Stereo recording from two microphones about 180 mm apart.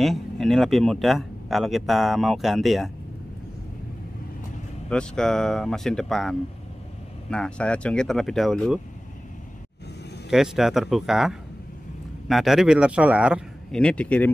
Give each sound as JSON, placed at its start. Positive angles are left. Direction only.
{"t": 0.0, "sound": "speech", "side_deg": 0}
{"t": 4.8, "sound": "speech", "side_deg": 5}
{"t": 10.3, "sound": "speech", "side_deg": 0}
{"t": 13.7, "sound": "speech", "side_deg": 5}